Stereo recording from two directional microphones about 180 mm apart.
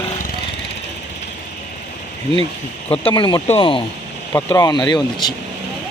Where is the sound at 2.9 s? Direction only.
30° left (ahead or behind).